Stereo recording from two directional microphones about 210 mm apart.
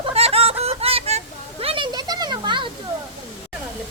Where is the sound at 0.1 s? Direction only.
30° right (ahead or behind).